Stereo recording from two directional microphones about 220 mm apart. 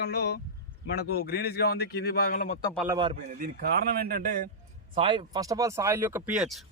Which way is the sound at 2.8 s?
20° right (ahead or behind).